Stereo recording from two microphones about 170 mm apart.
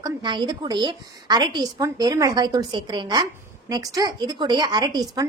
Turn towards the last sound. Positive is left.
turn(degrees=-25)  # may be behind; listen again after turning